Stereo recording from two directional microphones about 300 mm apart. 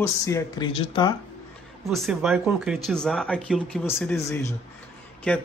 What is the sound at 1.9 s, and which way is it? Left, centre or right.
A man's voice, centre.